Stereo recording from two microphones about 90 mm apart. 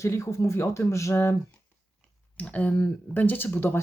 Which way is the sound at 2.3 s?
20° left (ahead or behind).